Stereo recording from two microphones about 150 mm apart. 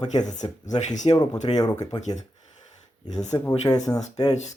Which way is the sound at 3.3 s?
30° left (ahead or behind).